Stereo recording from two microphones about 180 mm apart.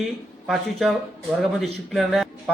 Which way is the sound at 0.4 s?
Centre (ahead or behind).